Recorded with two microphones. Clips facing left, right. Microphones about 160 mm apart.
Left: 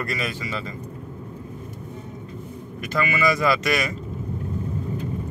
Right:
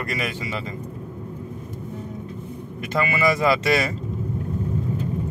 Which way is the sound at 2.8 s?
30° right (ahead or behind).